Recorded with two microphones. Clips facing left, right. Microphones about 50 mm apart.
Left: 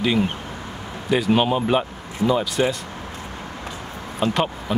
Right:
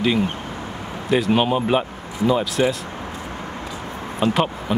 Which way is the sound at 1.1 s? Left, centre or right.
Centre.